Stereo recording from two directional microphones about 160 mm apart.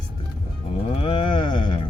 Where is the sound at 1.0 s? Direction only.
30° left (ahead or behind).